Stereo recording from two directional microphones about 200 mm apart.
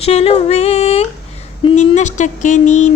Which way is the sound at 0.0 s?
30° left (ahead or behind).